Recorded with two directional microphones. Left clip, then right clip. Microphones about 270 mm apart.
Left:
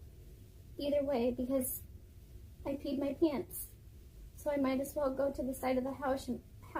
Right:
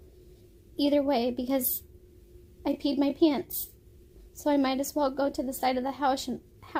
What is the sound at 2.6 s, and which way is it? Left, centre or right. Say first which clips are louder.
Speech: right 9 dB; right.